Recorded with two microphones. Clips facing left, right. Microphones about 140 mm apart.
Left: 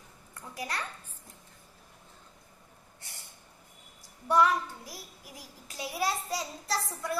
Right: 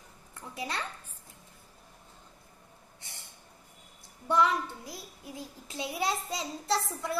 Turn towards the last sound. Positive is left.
turn(degrees=-25)  # may be behind; listen again after turning